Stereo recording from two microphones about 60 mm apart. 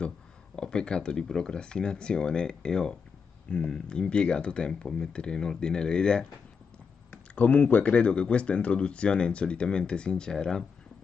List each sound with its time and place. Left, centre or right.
0.6 s speech: centre
7.3 s speech: left